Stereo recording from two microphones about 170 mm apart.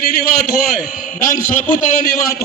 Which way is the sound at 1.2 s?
50° left (ahead or behind).